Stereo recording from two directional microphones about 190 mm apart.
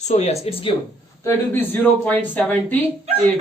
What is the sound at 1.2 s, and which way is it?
Speech, 10° left (ahead or behind).